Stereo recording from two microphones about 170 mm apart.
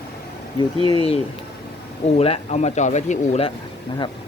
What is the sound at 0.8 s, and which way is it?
Speech, 30° left (ahead or behind).